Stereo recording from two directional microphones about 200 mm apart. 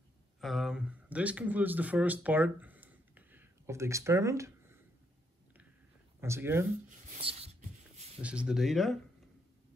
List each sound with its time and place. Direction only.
0.4 s speech: centre (ahead or behind)
6.2 s speech: 15° right (ahead or behind)
7.2 s writing: 30° right (ahead or behind)
8.2 s speech: 5° right (ahead or behind)